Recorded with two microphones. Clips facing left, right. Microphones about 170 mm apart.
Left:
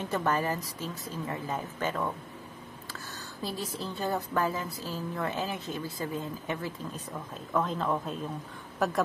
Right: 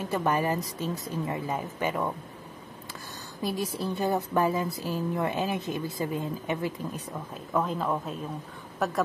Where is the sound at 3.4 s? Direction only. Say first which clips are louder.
Right 5 dB; 15° right (ahead or behind).